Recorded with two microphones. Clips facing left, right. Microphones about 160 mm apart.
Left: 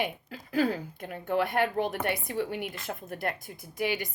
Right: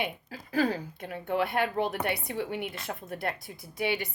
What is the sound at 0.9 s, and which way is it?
A woman's voice, 45° left (ahead or behind).